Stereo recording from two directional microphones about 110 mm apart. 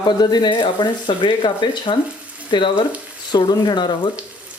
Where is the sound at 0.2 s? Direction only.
40° left (ahead or behind).